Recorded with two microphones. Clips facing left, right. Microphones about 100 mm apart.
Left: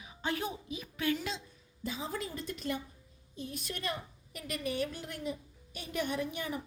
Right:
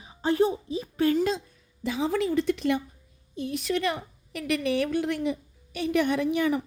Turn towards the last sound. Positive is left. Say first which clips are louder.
# right 11 dB
turn(degrees=-90)